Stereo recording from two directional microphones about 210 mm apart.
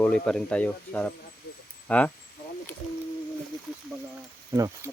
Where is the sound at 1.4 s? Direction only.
50° left (ahead or behind).